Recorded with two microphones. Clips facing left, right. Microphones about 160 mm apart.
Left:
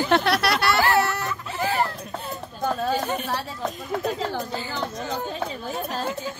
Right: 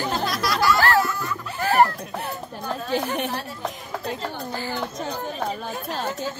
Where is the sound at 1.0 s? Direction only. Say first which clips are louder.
Even; 75° left (ahead or behind).